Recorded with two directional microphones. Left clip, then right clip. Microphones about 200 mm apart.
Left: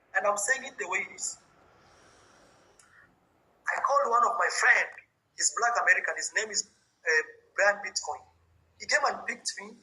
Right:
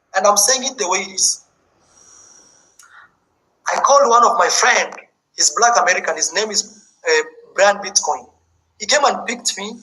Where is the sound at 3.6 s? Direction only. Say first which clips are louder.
Right 14 dB; 40° right (ahead or behind).